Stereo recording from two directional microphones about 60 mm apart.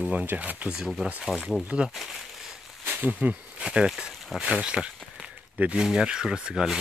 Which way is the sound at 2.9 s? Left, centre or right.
Right.